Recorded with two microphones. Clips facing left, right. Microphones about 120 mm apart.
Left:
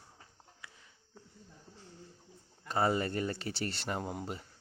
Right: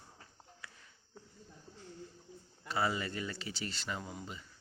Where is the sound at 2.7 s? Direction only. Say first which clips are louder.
Left 4 dB; 45° left (ahead or behind).